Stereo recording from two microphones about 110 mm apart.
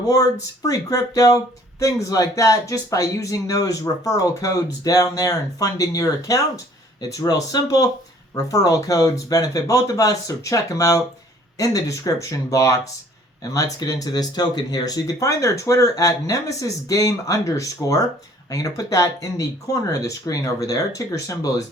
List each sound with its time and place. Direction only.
0.0 s speech: 35° left (ahead or behind)